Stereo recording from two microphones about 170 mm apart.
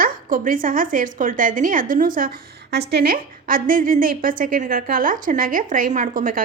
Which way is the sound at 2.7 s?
75° right (ahead or behind).